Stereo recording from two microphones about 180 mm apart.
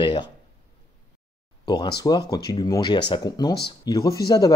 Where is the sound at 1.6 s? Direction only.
25° left (ahead or behind).